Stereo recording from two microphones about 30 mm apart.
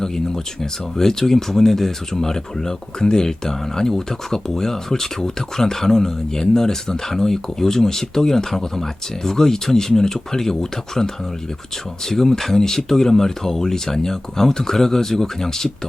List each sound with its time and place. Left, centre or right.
0.6 s speech: centre